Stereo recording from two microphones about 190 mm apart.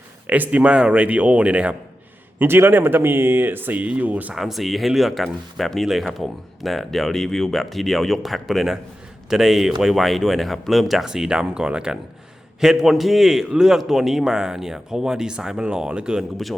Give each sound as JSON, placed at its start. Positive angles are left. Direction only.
{"t": 0.5, "sound": "speech", "side_deg": -5}